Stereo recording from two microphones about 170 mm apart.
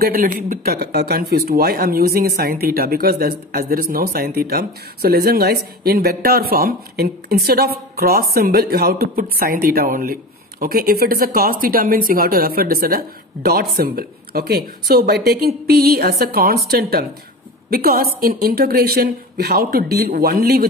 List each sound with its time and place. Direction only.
0.0 s a woman's voice: 60° right (ahead or behind)